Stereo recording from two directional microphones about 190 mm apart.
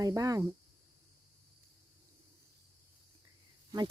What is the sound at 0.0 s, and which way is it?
Speech, 20° right (ahead or behind).